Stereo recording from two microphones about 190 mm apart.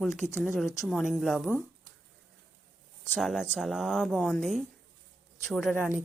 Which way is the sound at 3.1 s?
Centre (ahead or behind).